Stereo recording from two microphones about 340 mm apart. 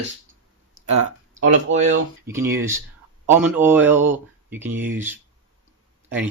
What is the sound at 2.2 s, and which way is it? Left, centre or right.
A man's voice, centre.